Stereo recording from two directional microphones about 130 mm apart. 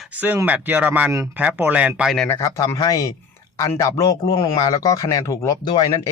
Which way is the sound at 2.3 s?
25° left (ahead or behind).